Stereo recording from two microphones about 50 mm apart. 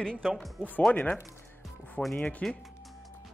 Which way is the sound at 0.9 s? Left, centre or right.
Left.